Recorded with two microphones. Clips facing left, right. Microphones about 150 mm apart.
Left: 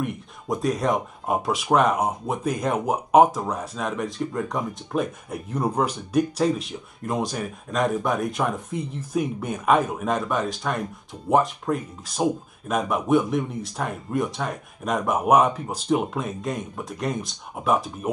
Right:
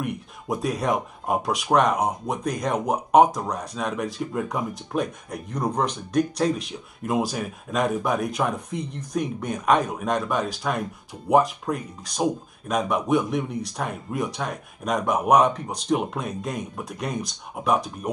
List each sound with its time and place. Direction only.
0.0 s speech: centre (ahead or behind)